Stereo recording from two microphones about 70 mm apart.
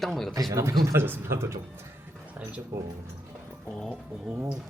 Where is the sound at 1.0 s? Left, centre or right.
Right.